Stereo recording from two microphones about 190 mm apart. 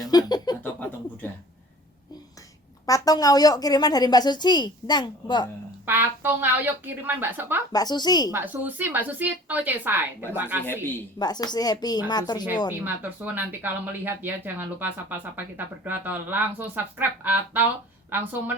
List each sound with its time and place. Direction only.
0.0 s a sound: 20° left (ahead or behind)
0.6 s a sound: 10° left (ahead or behind)
2.8 s a woman's voice: 20° left (ahead or behind)
5.8 s speech: 10° right (ahead or behind)
7.7 s a woman's voice: 20° left (ahead or behind)
8.3 s speech: 10° right (ahead or behind)
11.2 s a woman's voice: 20° left (ahead or behind)
12.8 s speech: 10° right (ahead or behind)